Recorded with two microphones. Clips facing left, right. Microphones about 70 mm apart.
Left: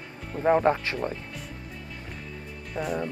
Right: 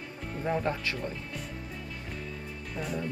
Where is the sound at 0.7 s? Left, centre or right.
Left.